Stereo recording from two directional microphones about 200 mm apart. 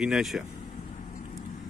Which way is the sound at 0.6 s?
40° left (ahead or behind).